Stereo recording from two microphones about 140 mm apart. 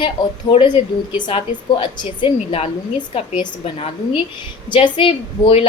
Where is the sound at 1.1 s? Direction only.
40° left (ahead or behind).